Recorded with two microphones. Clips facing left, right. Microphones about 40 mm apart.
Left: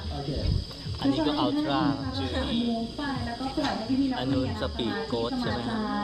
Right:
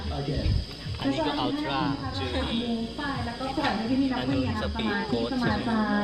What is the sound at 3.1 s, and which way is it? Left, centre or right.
Speech, right.